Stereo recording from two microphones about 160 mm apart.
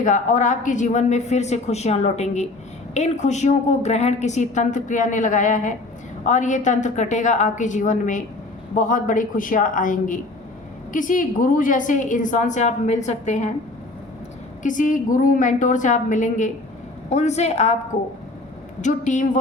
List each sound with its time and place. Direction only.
0.0 s a woman's voice: 50° left (ahead or behind)
14.6 s a woman's voice: 55° left (ahead or behind)
18.8 s a woman's voice: 50° left (ahead or behind)